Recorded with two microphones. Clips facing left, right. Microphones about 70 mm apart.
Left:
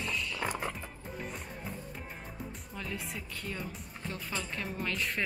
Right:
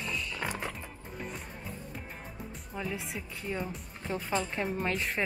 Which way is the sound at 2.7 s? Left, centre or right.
Centre.